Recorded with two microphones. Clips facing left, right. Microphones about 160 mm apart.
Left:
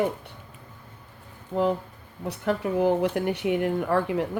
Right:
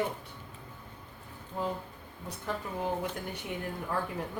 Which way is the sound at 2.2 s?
70° left (ahead or behind).